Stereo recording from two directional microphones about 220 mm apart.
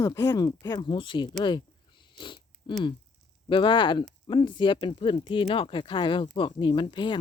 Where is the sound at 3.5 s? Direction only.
20° left (ahead or behind).